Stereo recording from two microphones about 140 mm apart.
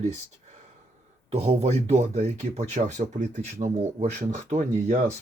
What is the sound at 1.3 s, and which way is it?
Speech, 50° right (ahead or behind).